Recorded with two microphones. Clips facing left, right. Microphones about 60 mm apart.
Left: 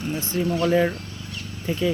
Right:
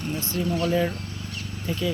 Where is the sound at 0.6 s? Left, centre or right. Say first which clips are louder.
Left 5 dB; left.